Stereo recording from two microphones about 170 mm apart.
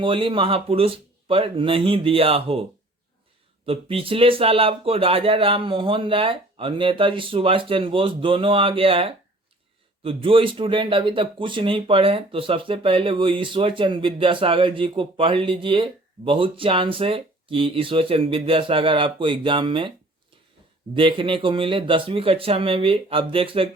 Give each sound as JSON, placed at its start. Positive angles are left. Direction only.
{"t": 0.0, "sound": "speech", "side_deg": -30}
{"t": 3.7, "sound": "speech", "side_deg": -35}
{"t": 20.9, "sound": "speech", "side_deg": -30}